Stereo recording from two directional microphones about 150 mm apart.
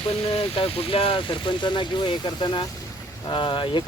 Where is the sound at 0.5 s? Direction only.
40° left (ahead or behind).